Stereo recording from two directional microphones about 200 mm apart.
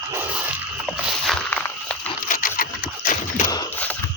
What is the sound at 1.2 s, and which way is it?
Walk, 5° left (ahead or behind).